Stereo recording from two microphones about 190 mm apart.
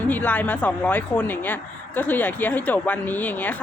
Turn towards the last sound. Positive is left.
turn(degrees=10)  # may be behind; listen again after turning